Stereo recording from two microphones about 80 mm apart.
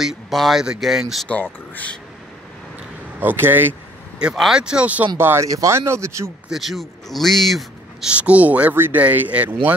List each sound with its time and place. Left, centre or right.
0.0 s speech: centre
1.3 s speech: centre
3.2 s speech: right
4.4 s speech: centre
5.1 s speech: right
6.5 s a man's voice: centre
8.1 s speech: centre